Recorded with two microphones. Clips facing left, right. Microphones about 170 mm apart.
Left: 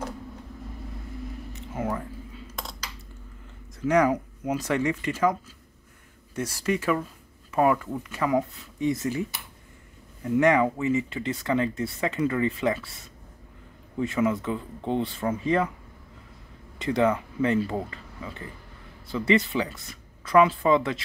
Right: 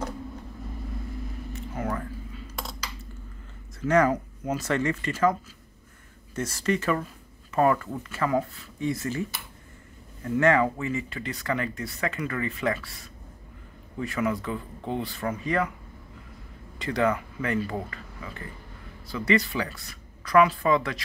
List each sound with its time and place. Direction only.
1.5 s whispering: 20° left (ahead or behind)
3.8 s speech: 10° left (ahead or behind)
10.2 s speech: 15° left (ahead or behind)
13.9 s speech: 20° left (ahead or behind)
16.7 s speech: 25° left (ahead or behind)